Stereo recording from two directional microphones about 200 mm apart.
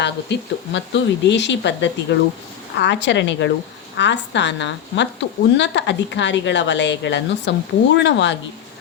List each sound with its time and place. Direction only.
0.0 s speech: 60° left (ahead or behind)